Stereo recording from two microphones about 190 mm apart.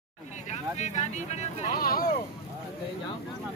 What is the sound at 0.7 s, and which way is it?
Speech, 40° left (ahead or behind).